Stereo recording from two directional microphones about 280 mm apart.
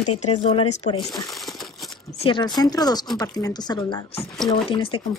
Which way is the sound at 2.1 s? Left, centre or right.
Centre.